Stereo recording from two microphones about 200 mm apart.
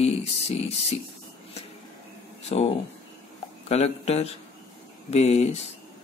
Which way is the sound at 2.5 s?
30° left (ahead or behind).